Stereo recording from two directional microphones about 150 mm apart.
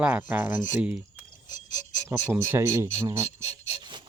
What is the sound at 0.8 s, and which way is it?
Speech, 10° right (ahead or behind).